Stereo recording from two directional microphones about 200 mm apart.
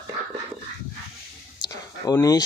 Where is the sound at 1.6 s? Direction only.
20° left (ahead or behind).